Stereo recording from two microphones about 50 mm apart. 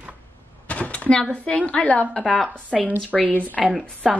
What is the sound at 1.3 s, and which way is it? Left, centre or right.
Speech, left.